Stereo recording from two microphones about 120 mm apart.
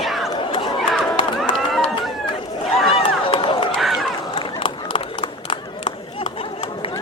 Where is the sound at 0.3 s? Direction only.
40° left (ahead or behind).